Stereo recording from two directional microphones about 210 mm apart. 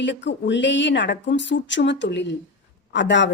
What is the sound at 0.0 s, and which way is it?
Speech, 60° left (ahead or behind).